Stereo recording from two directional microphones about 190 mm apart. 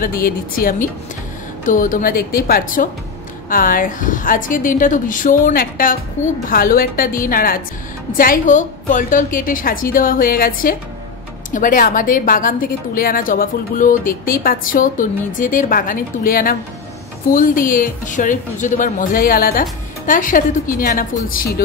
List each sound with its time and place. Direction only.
0.0 s a woman's voice: 50° left (ahead or behind)